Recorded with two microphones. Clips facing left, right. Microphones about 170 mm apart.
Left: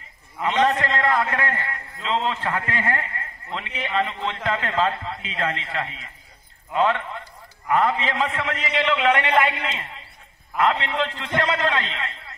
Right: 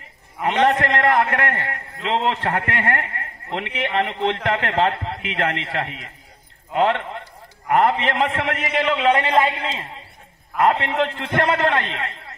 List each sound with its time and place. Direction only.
0.4 s a man's voice: 60° right (ahead or behind); by 9.8 s 30° right (ahead or behind)
10.6 s a man's voice: 45° right (ahead or behind)